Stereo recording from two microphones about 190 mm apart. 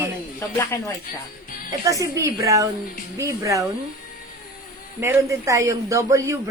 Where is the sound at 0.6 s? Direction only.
15° left (ahead or behind).